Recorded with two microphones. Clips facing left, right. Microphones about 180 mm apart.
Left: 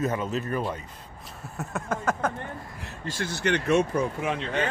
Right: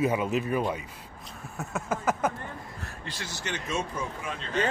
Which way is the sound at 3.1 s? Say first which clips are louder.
Left 10 dB; 55° left (ahead or behind).